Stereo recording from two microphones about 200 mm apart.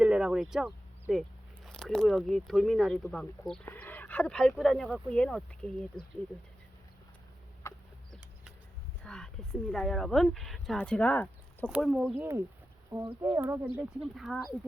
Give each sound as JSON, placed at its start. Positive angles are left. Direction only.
{"t": 0.0, "sound": "a sound", "side_deg": -5}
{"t": 1.6, "sound": "speech", "side_deg": 5}
{"t": 9.0, "sound": "speech", "side_deg": 5}
{"t": 11.7, "sound": "speech", "side_deg": -5}
{"t": 12.9, "sound": "speech", "side_deg": -25}
{"t": 13.3, "sound": "speech", "side_deg": -10}